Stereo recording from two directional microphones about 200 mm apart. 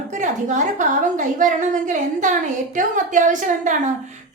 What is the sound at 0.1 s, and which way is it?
A woman's voice, 40° right (ahead or behind).